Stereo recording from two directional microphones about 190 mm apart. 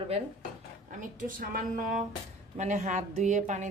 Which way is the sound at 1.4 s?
50° right (ahead or behind).